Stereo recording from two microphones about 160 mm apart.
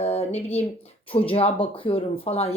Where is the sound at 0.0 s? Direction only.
40° left (ahead or behind).